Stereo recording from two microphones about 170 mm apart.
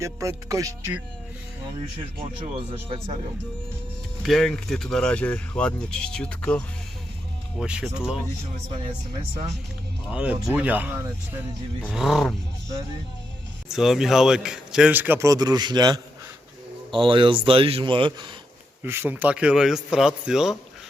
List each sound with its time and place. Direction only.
0.0 s speech: 20° right (ahead or behind)
2.1 s speech: 30° right (ahead or behind)
4.2 s speech: centre (ahead or behind)
7.6 s speech: 5° right (ahead or behind)
10.1 s a man's voice: 5° right (ahead or behind)
11.9 s speech: centre (ahead or behind)
13.7 s a man's voice: centre (ahead or behind); by 18.3 s 30° right (ahead or behind)
18.8 s speech: 10° right (ahead or behind)